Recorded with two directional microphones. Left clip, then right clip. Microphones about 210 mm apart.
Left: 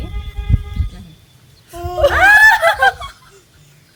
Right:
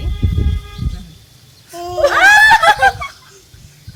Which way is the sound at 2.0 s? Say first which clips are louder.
Even; 10° right (ahead or behind).